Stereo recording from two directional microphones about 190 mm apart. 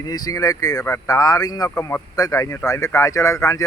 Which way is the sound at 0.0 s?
20° left (ahead or behind).